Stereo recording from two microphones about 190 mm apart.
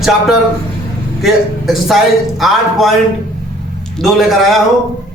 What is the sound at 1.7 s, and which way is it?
A man's voice, centre (ahead or behind).